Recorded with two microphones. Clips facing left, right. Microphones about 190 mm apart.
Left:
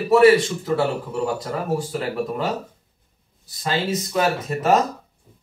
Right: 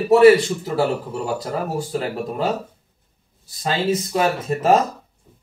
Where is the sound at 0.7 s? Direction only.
30° right (ahead or behind).